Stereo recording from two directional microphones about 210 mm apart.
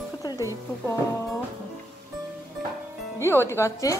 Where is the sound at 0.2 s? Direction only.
15° left (ahead or behind).